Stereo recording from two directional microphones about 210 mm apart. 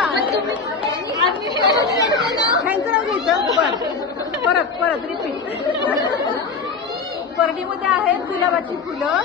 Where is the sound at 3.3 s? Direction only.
20° right (ahead or behind).